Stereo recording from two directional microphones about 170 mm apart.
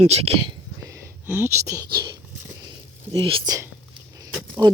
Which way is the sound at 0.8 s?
15° right (ahead or behind).